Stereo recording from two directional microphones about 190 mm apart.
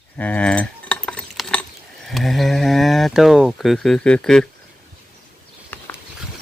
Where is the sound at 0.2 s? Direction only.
5° left (ahead or behind).